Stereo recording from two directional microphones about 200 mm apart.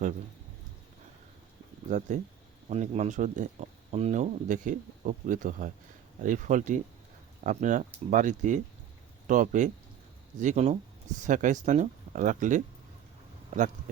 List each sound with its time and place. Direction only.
1.9 s speech: 40° right (ahead or behind)